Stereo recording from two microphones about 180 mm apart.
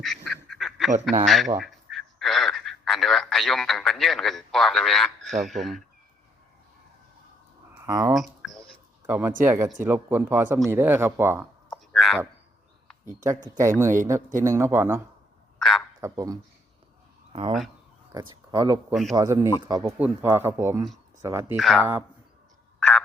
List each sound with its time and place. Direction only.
0.0 s duck: centre (ahead or behind)
1.2 s speech: centre (ahead or behind)
1.6 s telephone: centre (ahead or behind)
7.9 s speech: 20° right (ahead or behind)
8.1 s a sound: centre (ahead or behind)
9.0 s speech: 10° right (ahead or behind)
11.7 s a sound: centre (ahead or behind)
13.2 s speech: 15° right (ahead or behind)
15.5 s a sound: centre (ahead or behind)
16.0 s a man's voice: 20° right (ahead or behind)
18.1 s speech: 20° right (ahead or behind)
21.5 s speech: centre (ahead or behind)
22.8 s a sound: 5° left (ahead or behind)